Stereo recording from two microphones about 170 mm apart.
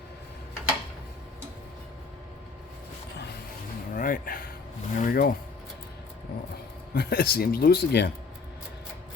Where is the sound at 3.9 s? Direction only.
50° left (ahead or behind).